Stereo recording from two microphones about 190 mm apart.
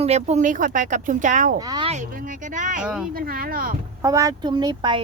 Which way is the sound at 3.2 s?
50° right (ahead or behind).